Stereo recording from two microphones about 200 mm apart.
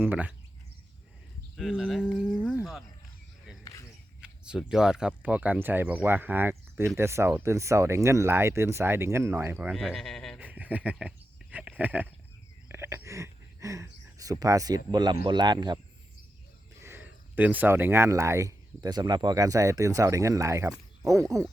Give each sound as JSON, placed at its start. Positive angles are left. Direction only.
{"t": 0.0, "sound": "speech", "side_deg": -10}
{"t": 1.5, "sound": "speech", "side_deg": 0}
{"t": 2.5, "sound": "a sound", "side_deg": -5}
{"t": 3.6, "sound": "a sound", "side_deg": 15}
{"t": 4.4, "sound": "speech", "side_deg": -5}
{"t": 9.7, "sound": "speech", "side_deg": 0}
{"t": 12.6, "sound": "a sound", "side_deg": -15}
{"t": 14.2, "sound": "speech", "side_deg": -15}
{"t": 16.8, "sound": "speech", "side_deg": -10}